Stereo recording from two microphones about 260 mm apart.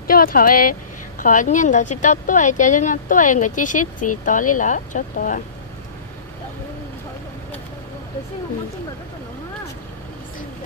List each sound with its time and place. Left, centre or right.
0.0 s speech: left